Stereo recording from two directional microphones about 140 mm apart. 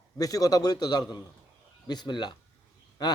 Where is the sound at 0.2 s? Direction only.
25° left (ahead or behind).